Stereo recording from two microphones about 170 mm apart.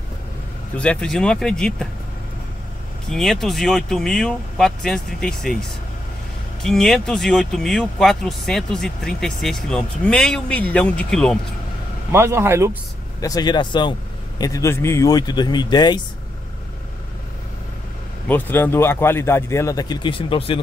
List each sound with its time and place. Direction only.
0.7 s speech: 5° left (ahead or behind)
3.1 s speech: centre (ahead or behind)
12.1 s speech: 15° right (ahead or behind)
13.2 s speech: 20° left (ahead or behind)
18.3 s speech: 10° left (ahead or behind); by 20.6 s 30° left (ahead or behind)